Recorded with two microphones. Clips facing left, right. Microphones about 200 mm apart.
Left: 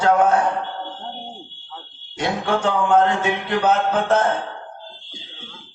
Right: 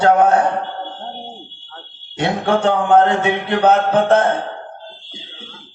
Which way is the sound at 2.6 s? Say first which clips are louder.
Right 3 dB; 60° right (ahead or behind).